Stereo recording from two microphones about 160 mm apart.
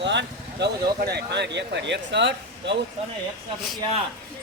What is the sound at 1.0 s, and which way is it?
Speech, 90° right.